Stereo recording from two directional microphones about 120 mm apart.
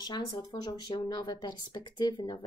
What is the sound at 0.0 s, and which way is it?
Speech, 35° left (ahead or behind).